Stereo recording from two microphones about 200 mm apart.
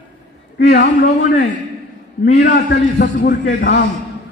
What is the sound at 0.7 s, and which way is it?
Speech, 45° left (ahead or behind).